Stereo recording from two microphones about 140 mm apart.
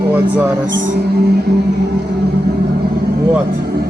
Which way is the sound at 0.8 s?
80° right.